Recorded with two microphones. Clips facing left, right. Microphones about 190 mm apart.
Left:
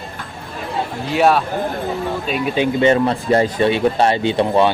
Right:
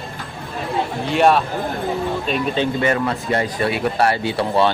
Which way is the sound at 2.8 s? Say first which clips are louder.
Left 5 dB; 25° left (ahead or behind).